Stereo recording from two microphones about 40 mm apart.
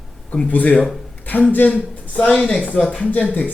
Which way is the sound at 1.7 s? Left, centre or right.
Left.